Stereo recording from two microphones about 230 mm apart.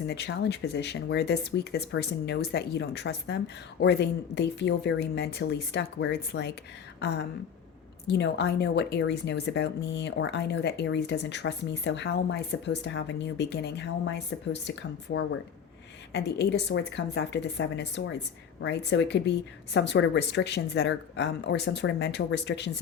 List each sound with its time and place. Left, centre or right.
0.1 s speech: left
8.0 s speech: left